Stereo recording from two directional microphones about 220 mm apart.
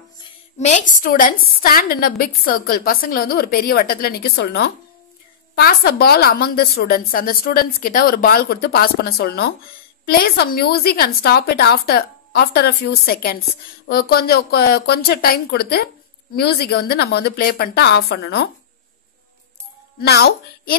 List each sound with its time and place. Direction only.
0.6 s a woman's voice: 35° left (ahead or behind); by 18.5 s 50° left (ahead or behind)
20.0 s a woman's voice: 45° left (ahead or behind)